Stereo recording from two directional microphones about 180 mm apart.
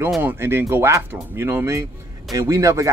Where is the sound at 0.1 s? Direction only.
10° right (ahead or behind).